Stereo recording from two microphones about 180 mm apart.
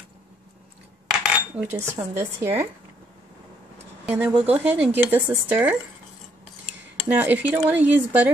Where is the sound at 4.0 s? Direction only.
10° right (ahead or behind).